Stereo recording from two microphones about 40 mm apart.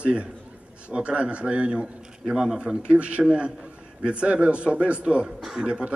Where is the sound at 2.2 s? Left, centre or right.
Centre.